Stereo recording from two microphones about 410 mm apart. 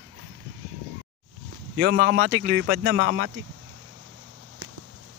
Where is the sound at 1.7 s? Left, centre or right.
Right.